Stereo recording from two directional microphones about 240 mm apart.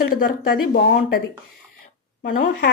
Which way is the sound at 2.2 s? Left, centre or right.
Left.